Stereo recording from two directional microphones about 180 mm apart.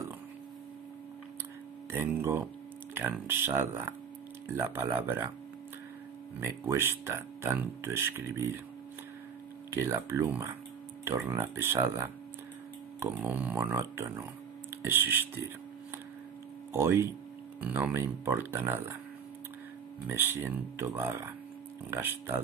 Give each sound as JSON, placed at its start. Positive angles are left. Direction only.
{"t": 1.9, "sound": "speech", "side_deg": -15}
{"t": 6.4, "sound": "speech", "side_deg": -15}
{"t": 9.7, "sound": "speech", "side_deg": -15}
{"t": 16.7, "sound": "speech", "side_deg": -15}
{"t": 20.1, "sound": "speech", "side_deg": -10}